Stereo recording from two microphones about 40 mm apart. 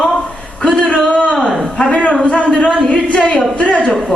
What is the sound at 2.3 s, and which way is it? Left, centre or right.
Speech, left.